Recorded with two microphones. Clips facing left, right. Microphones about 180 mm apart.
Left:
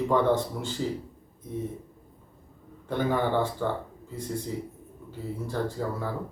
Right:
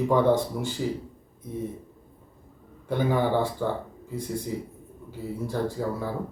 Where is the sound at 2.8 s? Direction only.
10° right (ahead or behind).